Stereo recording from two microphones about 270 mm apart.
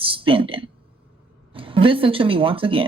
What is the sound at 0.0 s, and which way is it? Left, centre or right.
Speech, centre.